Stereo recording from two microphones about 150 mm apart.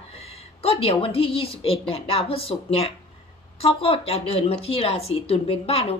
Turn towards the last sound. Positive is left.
turn(degrees=40)  # may be behind; listen again after turning